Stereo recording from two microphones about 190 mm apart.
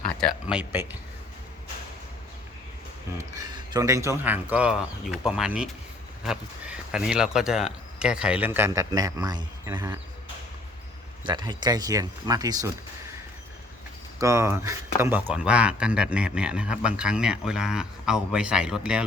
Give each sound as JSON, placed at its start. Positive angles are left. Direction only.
{"t": 0.2, "sound": "speech", "side_deg": 0}
{"t": 3.3, "sound": "speech", "side_deg": -20}
{"t": 11.3, "sound": "speech", "side_deg": -20}
{"t": 14.2, "sound": "speech", "side_deg": -15}